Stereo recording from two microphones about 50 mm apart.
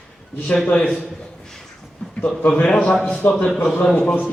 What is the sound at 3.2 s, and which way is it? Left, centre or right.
Speech, left.